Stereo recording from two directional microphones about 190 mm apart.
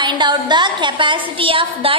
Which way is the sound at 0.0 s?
25° right (ahead or behind).